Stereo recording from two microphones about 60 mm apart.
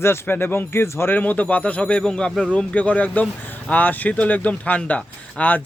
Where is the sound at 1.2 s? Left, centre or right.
Left.